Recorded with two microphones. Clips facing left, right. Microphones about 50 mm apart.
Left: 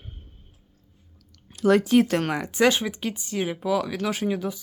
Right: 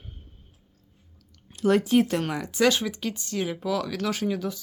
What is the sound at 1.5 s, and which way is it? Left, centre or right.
Speech, left.